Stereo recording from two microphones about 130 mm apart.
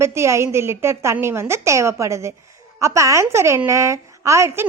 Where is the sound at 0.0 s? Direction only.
20° right (ahead or behind).